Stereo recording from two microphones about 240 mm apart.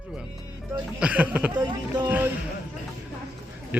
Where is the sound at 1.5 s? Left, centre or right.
Centre.